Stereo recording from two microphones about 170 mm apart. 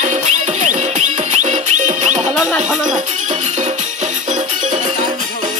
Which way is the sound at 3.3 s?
40° right (ahead or behind).